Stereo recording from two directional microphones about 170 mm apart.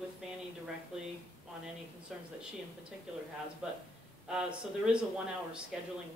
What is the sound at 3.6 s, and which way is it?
Speech, 5° right (ahead or behind).